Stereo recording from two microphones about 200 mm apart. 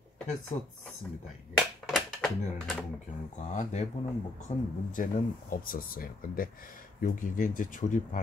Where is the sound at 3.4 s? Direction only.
35° left (ahead or behind).